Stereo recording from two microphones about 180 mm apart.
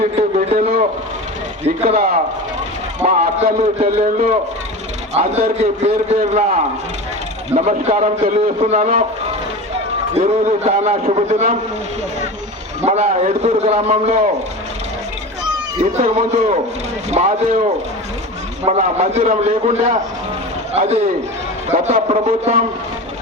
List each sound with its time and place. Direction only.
0.2 s a sound: 35° right (ahead or behind)
3.0 s a man's voice: 40° right (ahead or behind)
10.2 s a man's voice: 35° right (ahead or behind)
12.8 s a man's voice: 40° right (ahead or behind)
15.8 s a man's voice: 40° right (ahead or behind)
22.0 s a man's voice: 35° right (ahead or behind)